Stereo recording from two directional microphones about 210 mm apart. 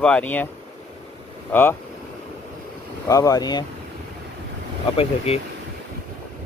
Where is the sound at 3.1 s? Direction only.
15° left (ahead or behind).